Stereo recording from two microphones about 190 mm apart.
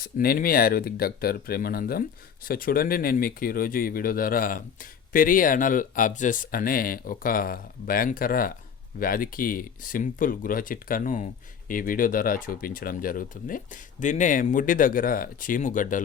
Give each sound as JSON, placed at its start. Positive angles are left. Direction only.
{"t": 0.0, "sound": "speech", "side_deg": 50}